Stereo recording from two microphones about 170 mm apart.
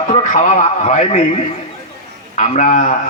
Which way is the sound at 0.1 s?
45° left (ahead or behind).